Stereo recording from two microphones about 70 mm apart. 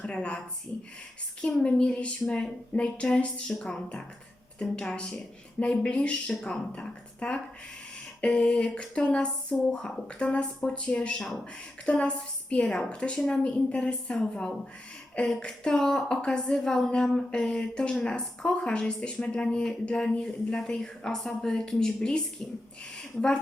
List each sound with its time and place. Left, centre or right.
0.0 s a woman's voice: centre
1.6 s a woman's voice: centre